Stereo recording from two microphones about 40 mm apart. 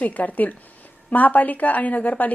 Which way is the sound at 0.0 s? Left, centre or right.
Left.